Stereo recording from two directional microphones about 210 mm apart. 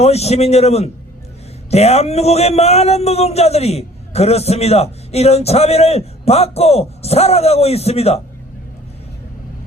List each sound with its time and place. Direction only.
0.0 s a man's voice: 30° left (ahead or behind)